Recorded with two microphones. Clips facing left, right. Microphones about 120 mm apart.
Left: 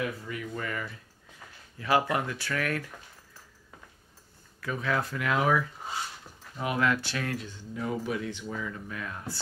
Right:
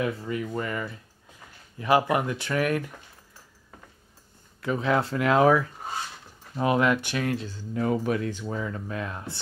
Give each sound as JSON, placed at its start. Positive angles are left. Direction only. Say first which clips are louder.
{"t": 0.2, "sound": "speech", "louder": "right 6 dB", "side_deg": -30}
{"t": 4.6, "sound": "speech", "louder": "right 6 dB", "side_deg": -25}
{"t": 6.5, "sound": "speech", "louder": "right 8 dB", "side_deg": -30}
{"t": 6.8, "sound": "speech", "louder": "right 4 dB", "side_deg": -15}
{"t": 7.7, "sound": "speech", "louder": "right 6 dB", "side_deg": -55}